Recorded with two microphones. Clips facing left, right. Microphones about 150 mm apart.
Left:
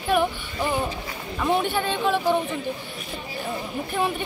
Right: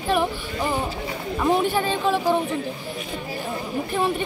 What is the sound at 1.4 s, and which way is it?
Speech, 5° right (ahead or behind).